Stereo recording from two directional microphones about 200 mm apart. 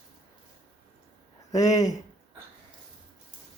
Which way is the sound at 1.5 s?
20° left (ahead or behind).